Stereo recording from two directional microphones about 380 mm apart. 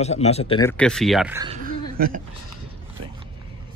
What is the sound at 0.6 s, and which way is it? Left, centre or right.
Speech, centre.